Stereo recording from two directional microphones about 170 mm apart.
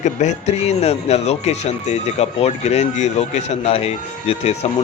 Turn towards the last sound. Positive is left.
turn(degrees=40)  # may be behind; listen again after turning